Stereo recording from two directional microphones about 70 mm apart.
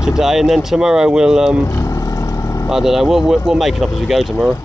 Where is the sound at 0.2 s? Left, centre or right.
Centre.